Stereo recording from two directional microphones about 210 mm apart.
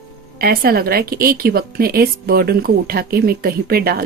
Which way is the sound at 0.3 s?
45° right (ahead or behind).